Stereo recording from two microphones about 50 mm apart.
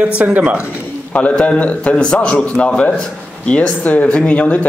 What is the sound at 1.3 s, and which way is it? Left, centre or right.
Speech, centre.